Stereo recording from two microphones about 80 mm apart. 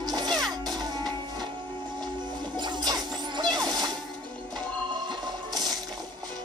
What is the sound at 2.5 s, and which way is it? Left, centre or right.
Music, right.